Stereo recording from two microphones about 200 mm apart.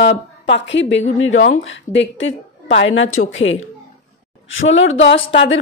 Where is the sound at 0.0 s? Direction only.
65° left (ahead or behind).